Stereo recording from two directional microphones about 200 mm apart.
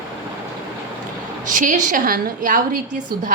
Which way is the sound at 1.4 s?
40° right (ahead or behind).